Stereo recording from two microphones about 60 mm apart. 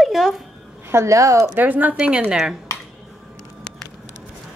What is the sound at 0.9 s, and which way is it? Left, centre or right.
Speech, right.